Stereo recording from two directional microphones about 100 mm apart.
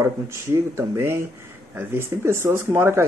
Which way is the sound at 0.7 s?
25° right (ahead or behind).